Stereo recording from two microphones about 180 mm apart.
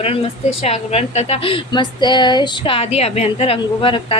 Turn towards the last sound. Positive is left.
turn(degrees=30)  # may be behind; listen again after turning